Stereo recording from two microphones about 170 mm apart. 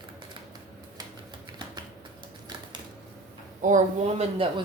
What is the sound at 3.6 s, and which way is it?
Speech, 45° right (ahead or behind).